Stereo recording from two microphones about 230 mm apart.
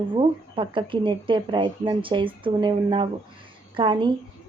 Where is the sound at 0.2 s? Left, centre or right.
Right.